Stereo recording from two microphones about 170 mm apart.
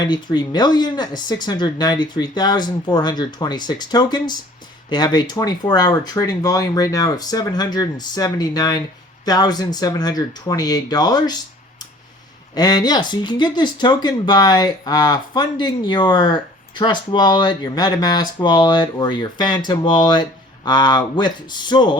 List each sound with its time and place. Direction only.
0.0 s speech: 25° left (ahead or behind)
12.5 s speech: 25° left (ahead or behind)